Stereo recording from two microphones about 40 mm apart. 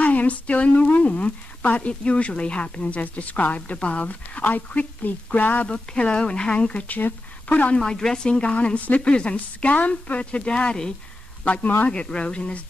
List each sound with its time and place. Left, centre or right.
0.0 s a woman's voice: left
3.0 s a woman's voice: left
5.7 s speech: left
7.0 s a sound: left
7.5 s a woman's voice: left
7.9 s speech: centre
8.3 s a woman's voice: left